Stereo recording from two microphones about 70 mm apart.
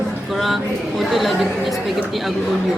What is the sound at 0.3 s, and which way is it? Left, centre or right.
A woman's voice, centre.